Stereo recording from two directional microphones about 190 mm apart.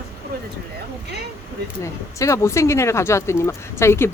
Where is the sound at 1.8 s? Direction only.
15° left (ahead or behind).